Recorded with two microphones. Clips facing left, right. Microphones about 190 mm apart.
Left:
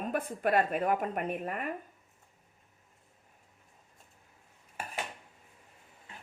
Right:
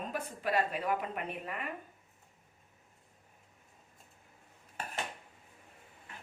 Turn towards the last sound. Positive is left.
turn(degrees=10)  # may be behind; listen again after turning